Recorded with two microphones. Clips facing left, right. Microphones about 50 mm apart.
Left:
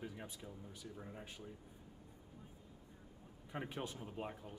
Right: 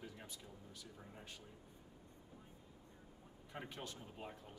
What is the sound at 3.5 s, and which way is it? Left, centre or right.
Speech, centre.